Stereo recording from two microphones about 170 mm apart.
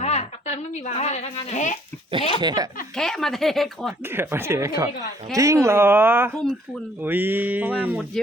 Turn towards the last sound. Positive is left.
turn(degrees=-10)  # may be behind; listen again after turning